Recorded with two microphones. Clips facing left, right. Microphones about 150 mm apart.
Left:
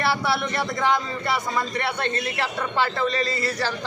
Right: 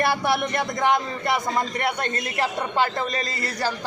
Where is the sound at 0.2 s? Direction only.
20° right (ahead or behind).